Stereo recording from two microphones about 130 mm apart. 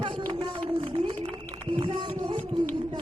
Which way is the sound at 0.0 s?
40° right (ahead or behind).